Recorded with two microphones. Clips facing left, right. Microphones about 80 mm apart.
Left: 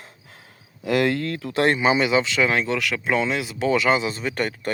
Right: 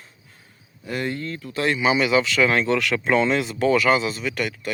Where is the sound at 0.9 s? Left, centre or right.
Left.